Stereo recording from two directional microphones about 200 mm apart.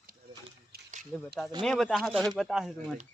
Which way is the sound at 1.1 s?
Centre (ahead or behind).